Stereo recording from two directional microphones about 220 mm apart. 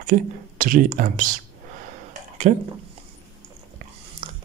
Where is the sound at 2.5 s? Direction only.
35° right (ahead or behind).